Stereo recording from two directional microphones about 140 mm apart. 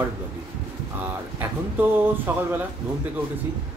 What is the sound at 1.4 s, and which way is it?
Speech, 15° right (ahead or behind).